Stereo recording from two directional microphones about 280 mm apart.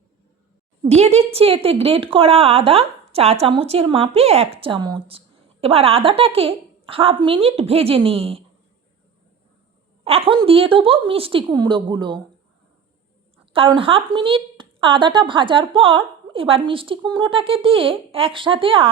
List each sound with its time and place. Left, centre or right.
0.9 s a woman's voice: right
10.0 s a woman's voice: right
13.4 s a woman's voice: centre